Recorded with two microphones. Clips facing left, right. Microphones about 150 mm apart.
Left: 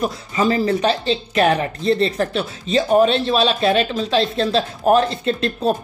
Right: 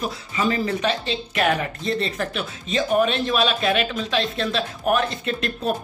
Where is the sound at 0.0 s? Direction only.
35° left (ahead or behind).